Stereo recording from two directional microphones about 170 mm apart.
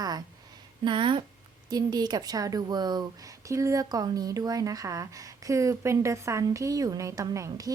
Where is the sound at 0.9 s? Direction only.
30° right (ahead or behind).